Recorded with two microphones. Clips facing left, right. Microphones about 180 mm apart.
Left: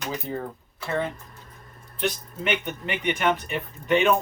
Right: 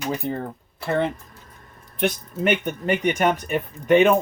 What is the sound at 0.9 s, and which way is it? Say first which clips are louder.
Speech: right 5 dB; 65° right (ahead or behind).